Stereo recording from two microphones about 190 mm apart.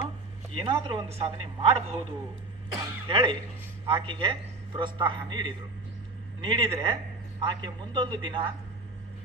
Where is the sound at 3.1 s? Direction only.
25° right (ahead or behind).